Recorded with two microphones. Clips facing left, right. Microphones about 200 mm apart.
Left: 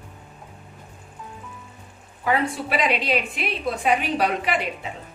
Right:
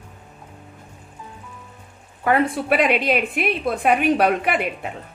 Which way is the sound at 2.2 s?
55° right (ahead or behind).